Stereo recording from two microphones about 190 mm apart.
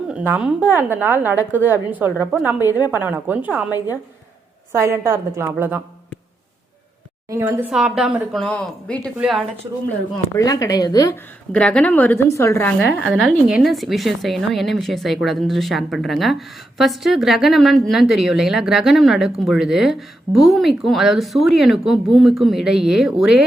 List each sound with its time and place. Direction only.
0.1 s a woman's voice: 10° right (ahead or behind)
4.7 s a woman's voice: 15° right (ahead or behind)
7.3 s a woman's voice: 15° right (ahead or behind); by 9.1 s 5° left (ahead or behind)
9.1 s a woman's voice: 5° right (ahead or behind)
10.3 s speech: 20° left (ahead or behind)
11.5 s a woman's voice: 5° left (ahead or behind)
13.0 s a woman's voice: centre (ahead or behind)